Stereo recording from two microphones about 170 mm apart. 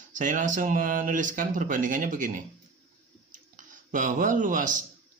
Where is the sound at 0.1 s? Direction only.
50° right (ahead or behind).